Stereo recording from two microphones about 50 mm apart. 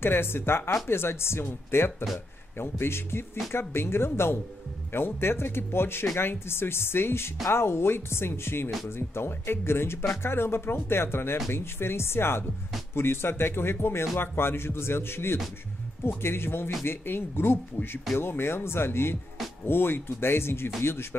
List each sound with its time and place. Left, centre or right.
0.0 s speech: left